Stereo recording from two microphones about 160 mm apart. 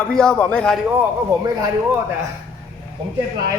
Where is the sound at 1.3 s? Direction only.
20° right (ahead or behind).